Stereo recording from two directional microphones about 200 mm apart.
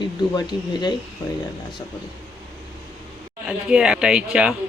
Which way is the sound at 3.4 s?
5° right (ahead or behind).